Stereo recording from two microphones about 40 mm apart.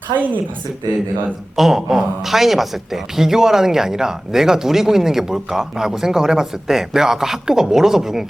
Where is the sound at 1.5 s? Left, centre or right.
Centre.